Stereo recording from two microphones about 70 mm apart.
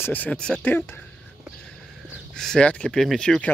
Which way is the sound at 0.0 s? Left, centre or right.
Left.